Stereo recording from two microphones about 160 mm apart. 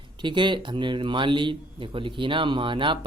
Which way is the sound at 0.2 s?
30° right (ahead or behind).